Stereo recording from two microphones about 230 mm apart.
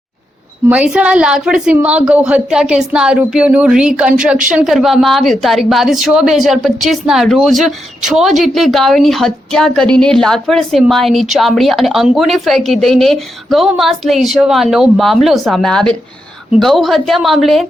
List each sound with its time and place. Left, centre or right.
0.7 s a woman's voice: centre